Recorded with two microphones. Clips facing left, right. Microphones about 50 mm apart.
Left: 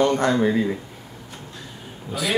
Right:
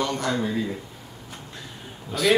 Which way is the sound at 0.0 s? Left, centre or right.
Left.